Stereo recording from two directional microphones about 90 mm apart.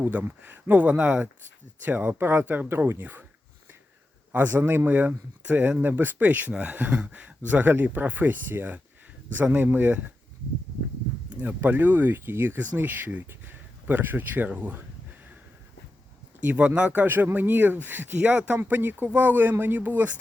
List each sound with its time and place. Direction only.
0.0 s speech: 20° right (ahead or behind)
4.3 s speech: 20° right (ahead or behind)
11.3 s speech: 20° right (ahead or behind)
16.4 s speech: 15° right (ahead or behind)